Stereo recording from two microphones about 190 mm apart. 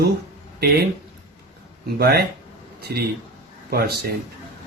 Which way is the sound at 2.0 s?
55° right (ahead or behind).